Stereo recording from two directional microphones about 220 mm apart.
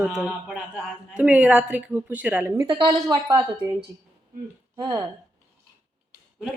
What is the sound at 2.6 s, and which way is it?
Speech, 20° right (ahead or behind).